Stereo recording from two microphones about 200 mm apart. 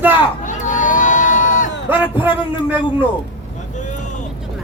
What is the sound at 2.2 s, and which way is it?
Speech, 10° right (ahead or behind).